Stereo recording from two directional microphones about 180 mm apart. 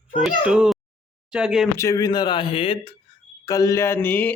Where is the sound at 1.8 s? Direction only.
20° left (ahead or behind).